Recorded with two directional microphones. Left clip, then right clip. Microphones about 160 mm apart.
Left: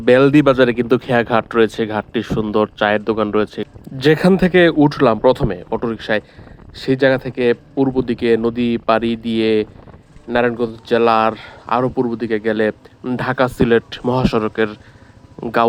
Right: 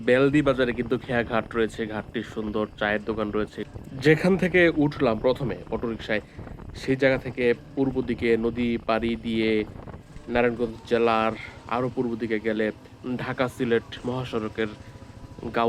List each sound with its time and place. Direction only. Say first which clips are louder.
0.0 s speech: left 9 dB; 60° left (ahead or behind)